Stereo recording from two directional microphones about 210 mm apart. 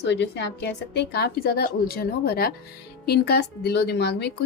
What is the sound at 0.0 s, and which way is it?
A woman's voice, 55° left (ahead or behind).